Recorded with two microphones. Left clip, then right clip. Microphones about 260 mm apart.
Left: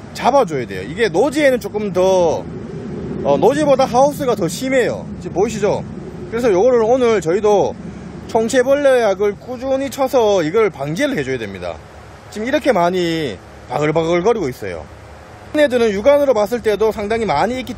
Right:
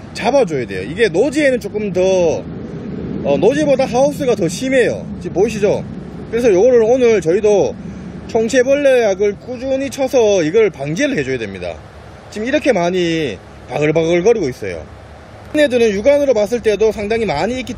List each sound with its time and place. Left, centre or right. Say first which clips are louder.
0.2 s speech: even; centre
4.9 s speech: right 2 dB; left
5.5 s speech: right 2 dB; centre
15.5 s speech: right 1 dB; centre